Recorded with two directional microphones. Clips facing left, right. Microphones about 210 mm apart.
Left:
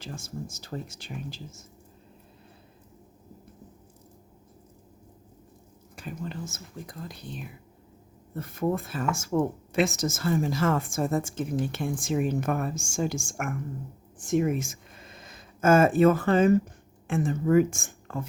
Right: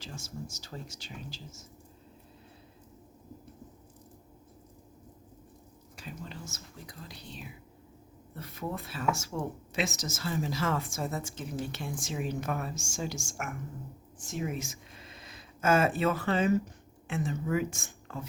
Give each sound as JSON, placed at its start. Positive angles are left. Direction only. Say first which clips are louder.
{"t": 0.0, "sound": "speech", "louder": "left 4 dB", "side_deg": 55}
{"t": 6.0, "sound": "speech", "louder": "left 7 dB", "side_deg": 50}